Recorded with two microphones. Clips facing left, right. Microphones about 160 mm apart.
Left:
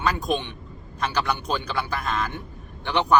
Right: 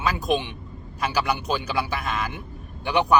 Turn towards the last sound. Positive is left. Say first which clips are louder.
# right 1 dB
turn(degrees=-10)  # may be behind; listen again after turning